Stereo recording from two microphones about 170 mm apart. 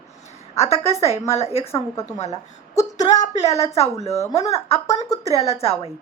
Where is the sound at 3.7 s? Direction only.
40° left (ahead or behind).